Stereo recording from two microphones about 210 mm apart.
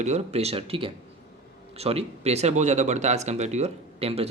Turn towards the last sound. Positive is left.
turn(degrees=-30)  # may be behind; listen again after turning